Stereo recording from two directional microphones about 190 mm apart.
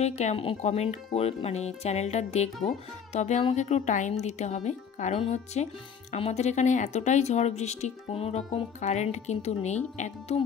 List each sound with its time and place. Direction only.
0.0 s speech: 35° left (ahead or behind)